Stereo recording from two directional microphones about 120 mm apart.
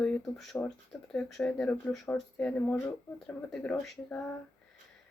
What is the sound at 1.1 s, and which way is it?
Speech, 5° left (ahead or behind).